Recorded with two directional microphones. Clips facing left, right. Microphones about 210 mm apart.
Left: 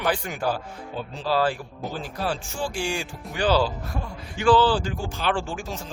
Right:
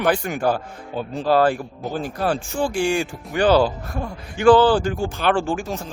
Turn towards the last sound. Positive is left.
turn(degrees=-55)  # may be behind; listen again after turning